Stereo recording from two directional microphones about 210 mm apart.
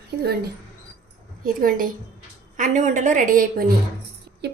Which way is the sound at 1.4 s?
40° right (ahead or behind).